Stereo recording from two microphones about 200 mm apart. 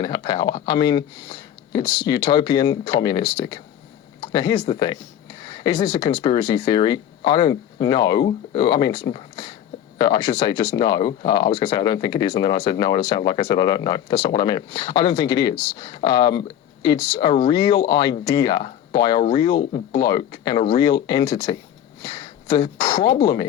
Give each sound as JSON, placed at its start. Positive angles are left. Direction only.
{"t": 0.0, "sound": "speech", "side_deg": 20}